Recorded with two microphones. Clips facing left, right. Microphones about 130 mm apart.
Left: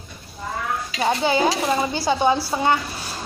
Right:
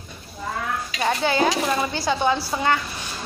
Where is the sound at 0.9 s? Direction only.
15° left (ahead or behind).